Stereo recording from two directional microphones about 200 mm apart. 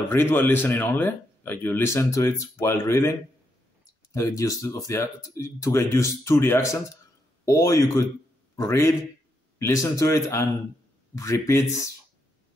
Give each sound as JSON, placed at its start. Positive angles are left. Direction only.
{"t": 0.1, "sound": "a man's voice", "side_deg": 10}